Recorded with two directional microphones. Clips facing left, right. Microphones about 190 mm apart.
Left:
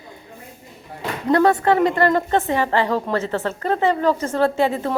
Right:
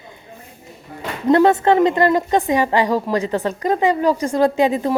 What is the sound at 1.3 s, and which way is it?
A woman's voice, 25° right (ahead or behind).